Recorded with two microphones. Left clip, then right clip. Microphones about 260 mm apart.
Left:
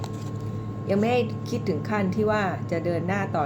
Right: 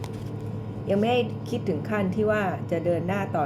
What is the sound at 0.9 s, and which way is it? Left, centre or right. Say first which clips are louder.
Speech: even; centre.